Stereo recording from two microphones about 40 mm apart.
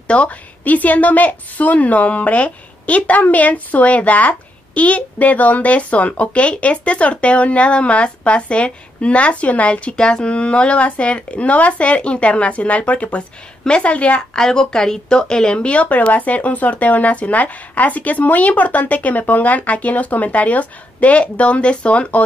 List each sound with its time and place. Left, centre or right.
0.1 s a woman's voice: left
13.7 s a woman's voice: left
14.3 s a woman's voice: centre